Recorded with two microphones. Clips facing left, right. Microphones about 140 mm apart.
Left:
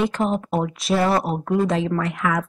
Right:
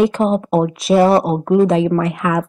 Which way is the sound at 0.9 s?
30° right (ahead or behind).